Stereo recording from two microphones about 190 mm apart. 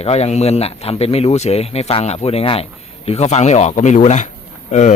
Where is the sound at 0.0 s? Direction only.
35° left (ahead or behind).